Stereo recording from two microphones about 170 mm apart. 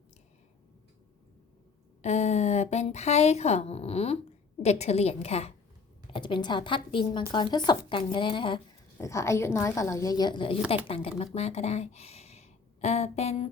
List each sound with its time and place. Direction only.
2.0 s a woman's voice: 40° left (ahead or behind)
9.0 s a woman's voice: 15° left (ahead or behind); by 13.5 s 40° left (ahead or behind)